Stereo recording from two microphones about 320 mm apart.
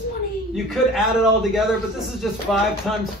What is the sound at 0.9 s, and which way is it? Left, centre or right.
Speech, centre.